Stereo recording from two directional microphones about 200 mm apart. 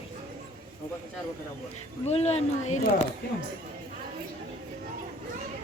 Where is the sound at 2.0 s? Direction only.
30° left (ahead or behind).